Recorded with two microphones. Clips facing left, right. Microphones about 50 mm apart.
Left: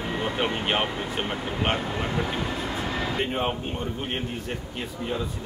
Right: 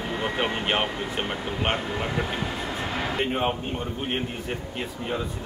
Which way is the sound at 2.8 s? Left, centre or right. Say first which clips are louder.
Right 2 dB; right.